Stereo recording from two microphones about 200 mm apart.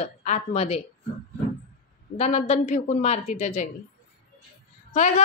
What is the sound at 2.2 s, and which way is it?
A woman's voice, 30° left (ahead or behind).